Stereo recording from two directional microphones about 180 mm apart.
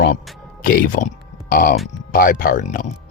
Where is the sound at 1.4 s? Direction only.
50° left (ahead or behind).